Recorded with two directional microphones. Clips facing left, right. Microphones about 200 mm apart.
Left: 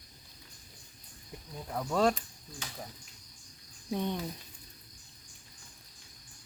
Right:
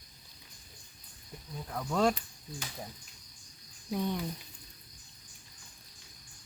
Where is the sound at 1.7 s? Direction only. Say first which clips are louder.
Left 1 dB; 5° left (ahead or behind).